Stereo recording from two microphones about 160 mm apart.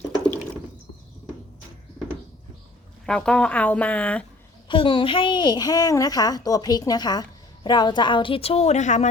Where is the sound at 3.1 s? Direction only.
5° left (ahead or behind).